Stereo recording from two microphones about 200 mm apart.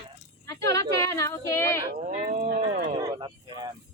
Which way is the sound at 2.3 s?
30° right (ahead or behind).